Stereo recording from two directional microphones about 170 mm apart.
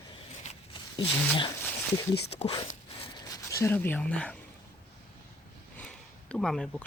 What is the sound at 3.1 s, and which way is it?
Speech, 20° left (ahead or behind).